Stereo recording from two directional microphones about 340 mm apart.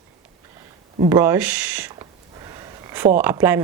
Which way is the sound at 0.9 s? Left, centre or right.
Centre.